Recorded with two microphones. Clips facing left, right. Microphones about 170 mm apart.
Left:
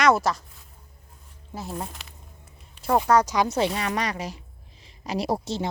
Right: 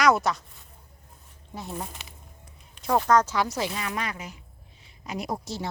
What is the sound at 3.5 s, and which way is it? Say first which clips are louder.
A woman's voice: left 5 dB; 30° left (ahead or behind).